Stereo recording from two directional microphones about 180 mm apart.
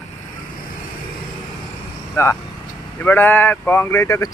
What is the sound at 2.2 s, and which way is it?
Speech, 15° left (ahead or behind).